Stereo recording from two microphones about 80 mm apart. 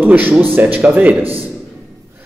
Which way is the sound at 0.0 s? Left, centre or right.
Right.